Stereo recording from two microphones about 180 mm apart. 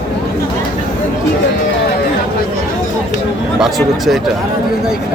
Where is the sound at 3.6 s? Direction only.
Centre (ahead or behind).